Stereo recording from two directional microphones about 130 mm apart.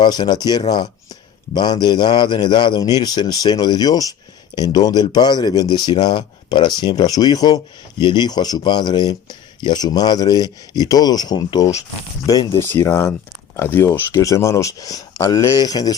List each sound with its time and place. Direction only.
0.0 s speech: 35° left (ahead or behind)